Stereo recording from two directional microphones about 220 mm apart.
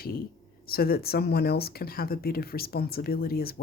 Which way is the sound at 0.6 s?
45° left (ahead or behind).